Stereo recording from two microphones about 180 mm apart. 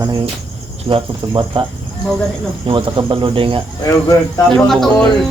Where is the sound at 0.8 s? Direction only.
30° right (ahead or behind).